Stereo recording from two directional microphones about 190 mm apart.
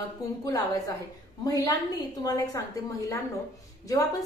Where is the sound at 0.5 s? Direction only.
20° left (ahead or behind).